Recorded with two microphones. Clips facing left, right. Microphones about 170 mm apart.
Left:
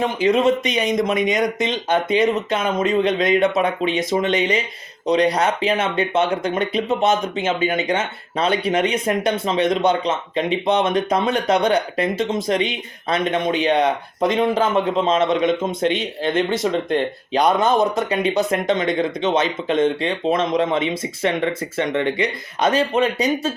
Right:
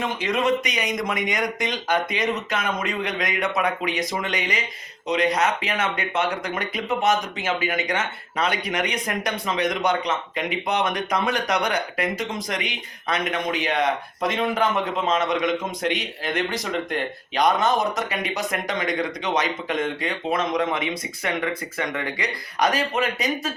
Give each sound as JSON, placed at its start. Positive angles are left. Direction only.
{"t": 0.2, "sound": "speech", "side_deg": 30}